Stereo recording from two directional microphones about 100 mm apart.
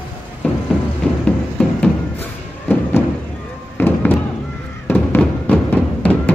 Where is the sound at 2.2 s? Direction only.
20° left (ahead or behind).